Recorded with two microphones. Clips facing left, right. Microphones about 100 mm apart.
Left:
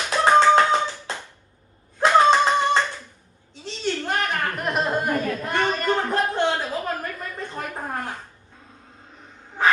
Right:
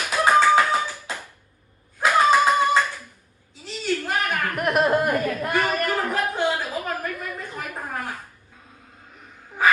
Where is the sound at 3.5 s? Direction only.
30° left (ahead or behind).